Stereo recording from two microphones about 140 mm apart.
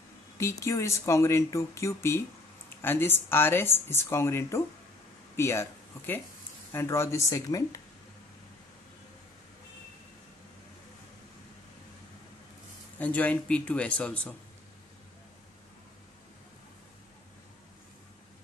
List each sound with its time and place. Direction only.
0.4 s speech: 20° left (ahead or behind)
13.0 s speech: 10° left (ahead or behind)